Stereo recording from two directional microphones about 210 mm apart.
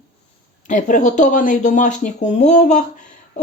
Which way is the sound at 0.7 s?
35° left (ahead or behind).